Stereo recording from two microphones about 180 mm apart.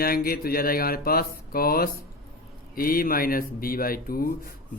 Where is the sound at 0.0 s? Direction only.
55° left (ahead or behind).